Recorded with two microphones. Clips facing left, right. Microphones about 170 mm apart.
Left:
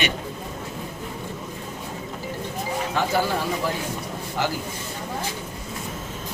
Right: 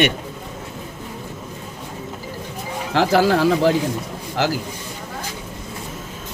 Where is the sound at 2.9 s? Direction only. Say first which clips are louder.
Right 9 dB; 90° right.